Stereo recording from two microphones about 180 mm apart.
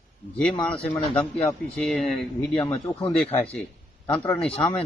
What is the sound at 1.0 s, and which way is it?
Speech, 25° left (ahead or behind).